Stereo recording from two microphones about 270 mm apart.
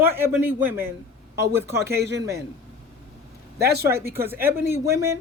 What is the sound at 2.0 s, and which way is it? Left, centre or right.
Speech, right.